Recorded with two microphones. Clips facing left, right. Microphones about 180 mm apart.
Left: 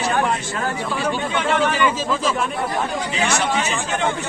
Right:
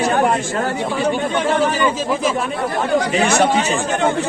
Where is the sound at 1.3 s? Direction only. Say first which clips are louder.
Right 3 dB; 40° right (ahead or behind).